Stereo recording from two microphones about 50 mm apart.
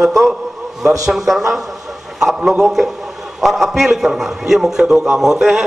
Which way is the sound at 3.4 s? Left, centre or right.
Centre.